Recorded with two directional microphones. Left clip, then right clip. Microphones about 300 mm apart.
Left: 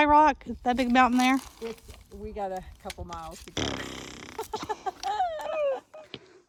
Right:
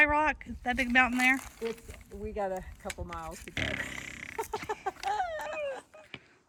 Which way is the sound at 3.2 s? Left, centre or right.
Centre.